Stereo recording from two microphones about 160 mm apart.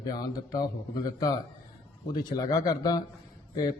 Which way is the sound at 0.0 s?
25° left (ahead or behind).